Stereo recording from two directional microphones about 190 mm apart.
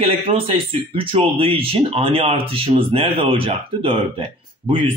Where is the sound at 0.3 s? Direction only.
30° right (ahead or behind).